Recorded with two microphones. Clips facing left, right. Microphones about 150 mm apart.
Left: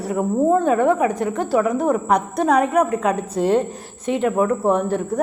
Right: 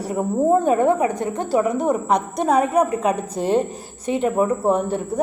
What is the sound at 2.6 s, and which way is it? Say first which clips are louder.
Speech: even; 30° right (ahead or behind).